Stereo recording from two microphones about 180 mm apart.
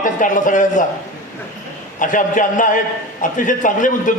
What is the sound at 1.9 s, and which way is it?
A man's voice, 45° left (ahead or behind).